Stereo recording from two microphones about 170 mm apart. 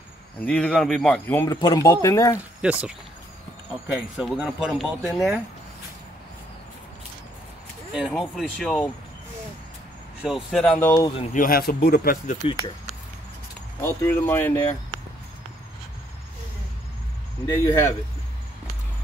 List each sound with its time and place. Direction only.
0.4 s speech: 5° left (ahead or behind)
2.6 s speech: 5° right (ahead or behind)
8.1 s speech: centre (ahead or behind)
10.2 s speech: centre (ahead or behind)
11.3 s speech: 60° left (ahead or behind)
12.4 s speech: 30° left (ahead or behind)
13.7 s speech: 15° left (ahead or behind)
17.5 s speech: 15° left (ahead or behind)